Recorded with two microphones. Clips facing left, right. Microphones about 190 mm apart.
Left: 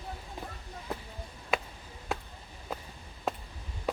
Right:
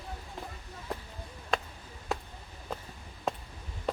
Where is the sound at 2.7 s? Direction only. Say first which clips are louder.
Even; 5° left (ahead or behind).